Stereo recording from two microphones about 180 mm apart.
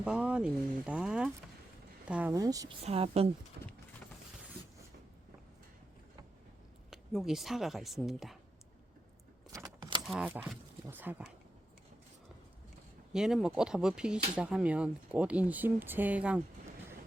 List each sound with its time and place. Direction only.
0.0 s speech: 5° right (ahead or behind)
2.3 s speech: 20° right (ahead or behind)
2.8 s a woman's voice: 35° right (ahead or behind)
3.6 s clip-clop: 60° right (ahead or behind)
6.9 s speech: centre (ahead or behind)
9.5 s keys jangling: 20° right (ahead or behind)
10.1 s speech: 5° right (ahead or behind)
13.1 s speech: 5° right (ahead or behind)